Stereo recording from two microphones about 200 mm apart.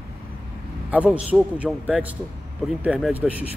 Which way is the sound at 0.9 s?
5° right (ahead or behind).